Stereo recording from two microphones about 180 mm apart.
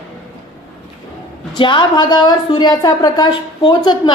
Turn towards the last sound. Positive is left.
turn(degrees=25)  # may be behind; listen again after turning